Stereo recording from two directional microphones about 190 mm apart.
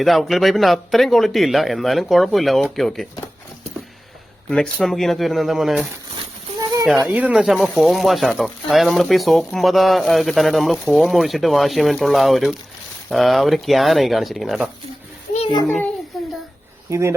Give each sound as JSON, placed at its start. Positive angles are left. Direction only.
{"t": 0.0, "sound": "speech", "side_deg": 0}
{"t": 4.4, "sound": "speech", "side_deg": 5}
{"t": 7.0, "sound": "a child's voice", "side_deg": -10}
{"t": 16.1, "sound": "a sound", "side_deg": 0}
{"t": 16.9, "sound": "speech", "side_deg": -15}